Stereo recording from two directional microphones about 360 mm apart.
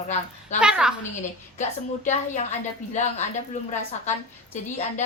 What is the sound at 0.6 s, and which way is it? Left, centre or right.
Speech, centre.